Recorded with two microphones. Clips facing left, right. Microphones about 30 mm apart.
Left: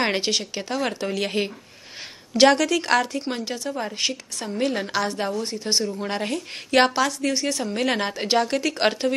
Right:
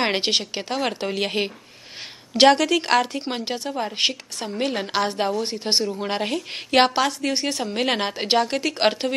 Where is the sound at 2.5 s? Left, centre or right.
Centre.